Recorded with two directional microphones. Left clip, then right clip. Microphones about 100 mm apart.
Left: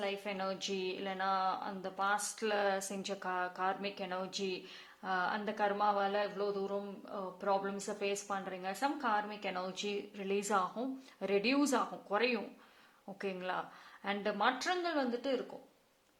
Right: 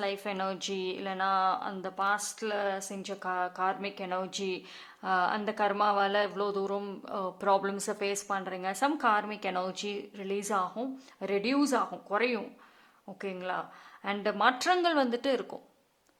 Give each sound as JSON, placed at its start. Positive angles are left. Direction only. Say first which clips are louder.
{"t": 0.0, "sound": "a woman's voice", "louder": "right 5 dB", "side_deg": -45}
{"t": 2.4, "sound": "speech", "louder": "right 2 dB", "side_deg": -15}
{"t": 8.7, "sound": "speech", "louder": "right 7 dB", "side_deg": -60}
{"t": 10.2, "sound": "speech", "louder": "right 3 dB", "side_deg": -15}
{"t": 14.9, "sound": "speech", "louder": "right 7 dB", "side_deg": -65}